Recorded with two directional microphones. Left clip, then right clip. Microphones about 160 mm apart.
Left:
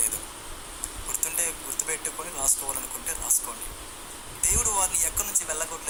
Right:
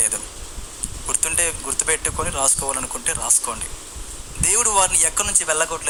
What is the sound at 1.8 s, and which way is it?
Speech, 45° right (ahead or behind).